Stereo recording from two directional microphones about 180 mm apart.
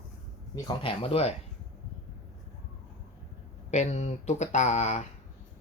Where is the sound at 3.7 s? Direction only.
40° left (ahead or behind).